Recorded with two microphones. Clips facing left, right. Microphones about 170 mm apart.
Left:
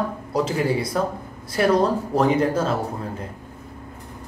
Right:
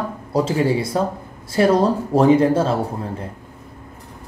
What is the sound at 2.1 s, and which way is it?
Speech, 30° right (ahead or behind).